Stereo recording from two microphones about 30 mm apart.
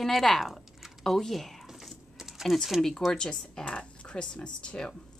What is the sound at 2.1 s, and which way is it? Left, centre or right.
Typing, centre.